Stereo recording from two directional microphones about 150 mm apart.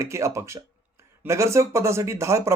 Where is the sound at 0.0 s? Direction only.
20° right (ahead or behind).